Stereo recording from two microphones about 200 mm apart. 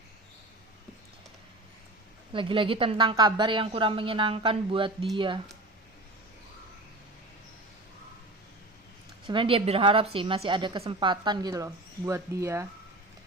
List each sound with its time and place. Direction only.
2.3 s a woman's voice: 25° right (ahead or behind)
9.2 s a woman's voice: 25° right (ahead or behind)